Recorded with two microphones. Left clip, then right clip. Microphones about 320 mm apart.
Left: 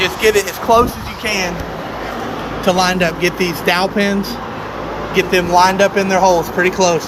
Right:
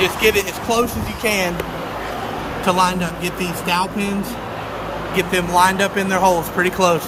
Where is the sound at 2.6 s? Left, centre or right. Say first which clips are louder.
Left 3 dB; centre.